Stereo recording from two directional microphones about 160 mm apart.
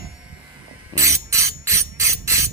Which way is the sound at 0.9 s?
20° right (ahead or behind).